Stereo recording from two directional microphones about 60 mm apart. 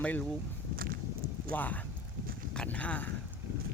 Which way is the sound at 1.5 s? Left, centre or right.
Left.